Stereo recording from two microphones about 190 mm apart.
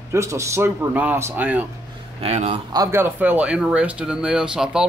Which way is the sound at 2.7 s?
15° right (ahead or behind).